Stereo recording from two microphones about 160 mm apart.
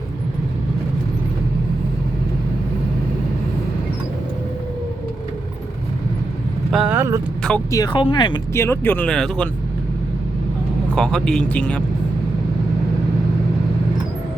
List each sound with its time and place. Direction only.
6.7 s vehicle: 5° right (ahead or behind)
7.7 s speech: 20° left (ahead or behind)
8.5 s speech: 15° left (ahead or behind)
10.9 s speech: 5° left (ahead or behind)